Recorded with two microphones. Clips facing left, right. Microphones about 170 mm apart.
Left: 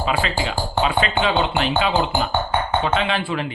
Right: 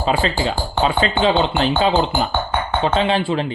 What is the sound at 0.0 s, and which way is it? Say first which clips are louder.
Speech: right 3 dB; 35° right (ahead or behind).